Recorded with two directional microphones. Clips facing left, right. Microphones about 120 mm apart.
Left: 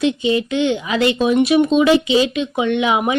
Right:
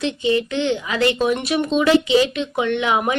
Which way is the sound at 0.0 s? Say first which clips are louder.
Left 3 dB; 15° left (ahead or behind).